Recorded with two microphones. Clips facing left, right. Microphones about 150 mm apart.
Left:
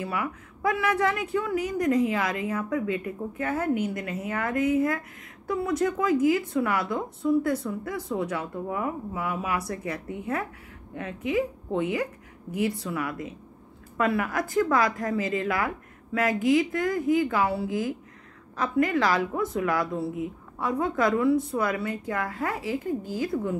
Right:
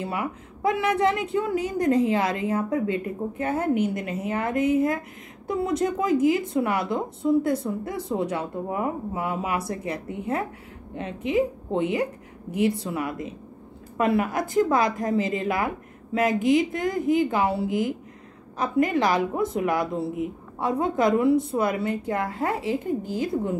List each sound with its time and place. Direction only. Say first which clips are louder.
0.0 s a woman's voice: right 1 dB; 25° right (ahead or behind)